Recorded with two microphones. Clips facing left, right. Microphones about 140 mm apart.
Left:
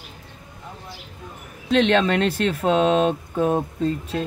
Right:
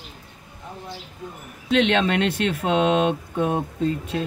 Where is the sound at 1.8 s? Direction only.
40° left (ahead or behind).